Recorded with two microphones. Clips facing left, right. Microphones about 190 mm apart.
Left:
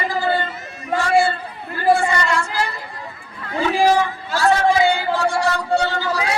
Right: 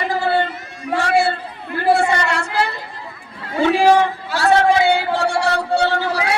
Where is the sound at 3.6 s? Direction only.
70° right (ahead or behind).